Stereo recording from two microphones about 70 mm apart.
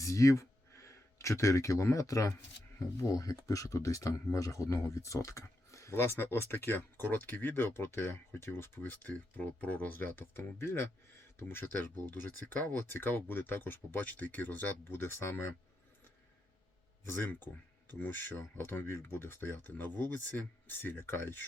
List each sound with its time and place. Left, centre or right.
0.0 s speech: left
18.0 s speech: left